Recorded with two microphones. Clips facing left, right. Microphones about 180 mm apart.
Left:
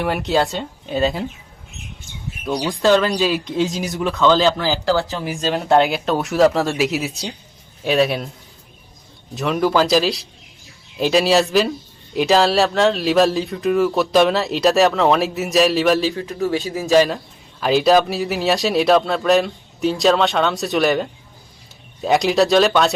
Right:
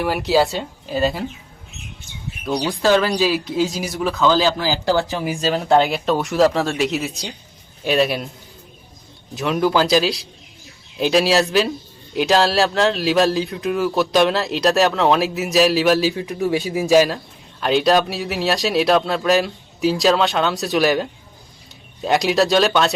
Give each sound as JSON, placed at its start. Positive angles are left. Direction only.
{"t": 0.0, "sound": "speech", "side_deg": 0}
{"t": 2.6, "sound": "speech", "side_deg": 0}
{"t": 4.9, "sound": "a man's voice", "side_deg": -15}
{"t": 5.3, "sound": "speech", "side_deg": 0}
{"t": 9.3, "sound": "speech", "side_deg": 0}
{"t": 16.1, "sound": "a man's voice", "side_deg": -15}